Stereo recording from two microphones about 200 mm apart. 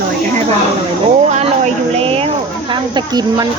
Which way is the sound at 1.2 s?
35° right (ahead or behind).